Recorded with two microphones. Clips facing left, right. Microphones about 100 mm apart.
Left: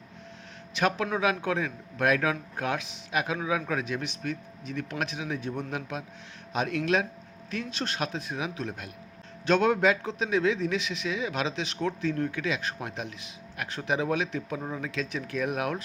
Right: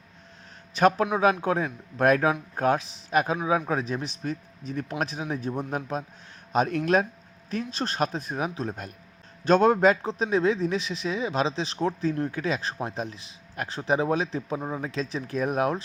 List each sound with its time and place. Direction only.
0.7 s a man's voice: 40° right (ahead or behind)